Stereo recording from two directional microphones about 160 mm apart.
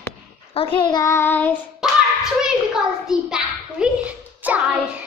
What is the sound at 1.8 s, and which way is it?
Hands, 5° right (ahead or behind).